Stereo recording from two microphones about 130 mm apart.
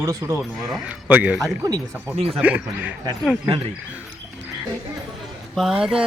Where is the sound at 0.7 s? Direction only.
5° right (ahead or behind).